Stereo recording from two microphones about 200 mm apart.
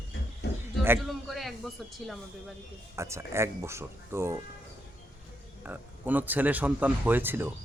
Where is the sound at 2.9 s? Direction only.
15° right (ahead or behind).